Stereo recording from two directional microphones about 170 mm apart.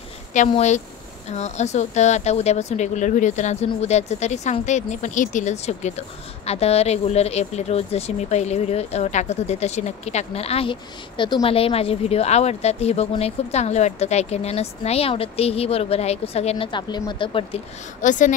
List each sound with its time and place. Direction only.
0.6 s speech: 45° left (ahead or behind)
18.0 s speech: 50° left (ahead or behind)